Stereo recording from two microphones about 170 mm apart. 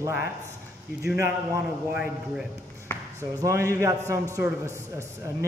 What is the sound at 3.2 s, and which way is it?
A man's voice, 15° right (ahead or behind).